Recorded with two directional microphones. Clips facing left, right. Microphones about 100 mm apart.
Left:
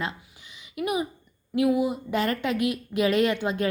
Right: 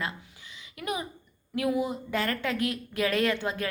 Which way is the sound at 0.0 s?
20° left (ahead or behind).